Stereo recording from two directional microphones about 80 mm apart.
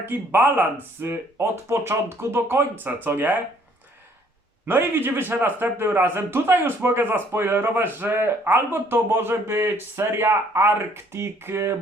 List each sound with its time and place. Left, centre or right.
0.0 s a man's voice: right
4.6 s a man's voice: right